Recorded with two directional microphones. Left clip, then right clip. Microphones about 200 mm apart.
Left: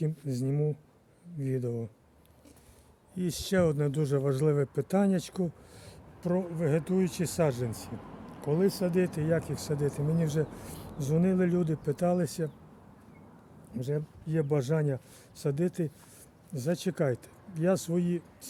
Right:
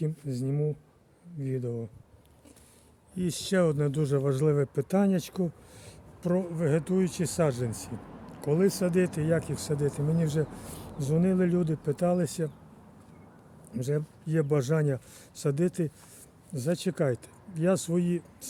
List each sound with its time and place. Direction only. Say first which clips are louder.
0.0 s speech: even; 10° left (ahead or behind)
3.2 s speech: right 1 dB; 5° right (ahead or behind)
13.7 s speech: right 3 dB; 15° right (ahead or behind)